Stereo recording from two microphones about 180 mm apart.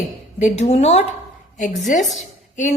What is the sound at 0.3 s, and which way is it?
A woman's voice, 40° left (ahead or behind).